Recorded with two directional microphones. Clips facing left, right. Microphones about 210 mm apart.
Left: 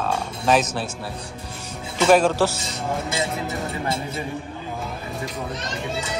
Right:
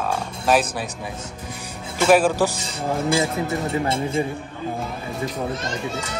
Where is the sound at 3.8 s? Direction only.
25° right (ahead or behind).